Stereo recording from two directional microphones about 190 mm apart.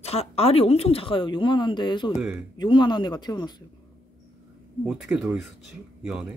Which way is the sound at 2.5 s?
25° left (ahead or behind).